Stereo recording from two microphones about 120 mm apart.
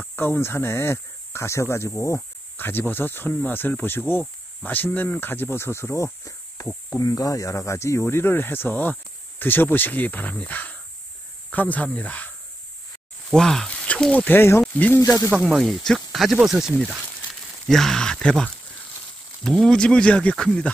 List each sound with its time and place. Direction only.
0.0 s speech: 15° left (ahead or behind)
13.3 s speech: 5° left (ahead or behind)
15.0 s speech: 25° left (ahead or behind)
15.4 s speech: centre (ahead or behind)
19.6 s speech: 5° left (ahead or behind)